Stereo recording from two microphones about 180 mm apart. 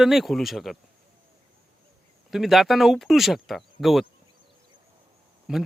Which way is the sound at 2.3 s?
Centre (ahead or behind).